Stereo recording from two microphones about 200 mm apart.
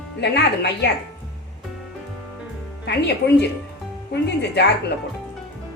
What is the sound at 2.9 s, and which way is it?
Speech, 60° left (ahead or behind).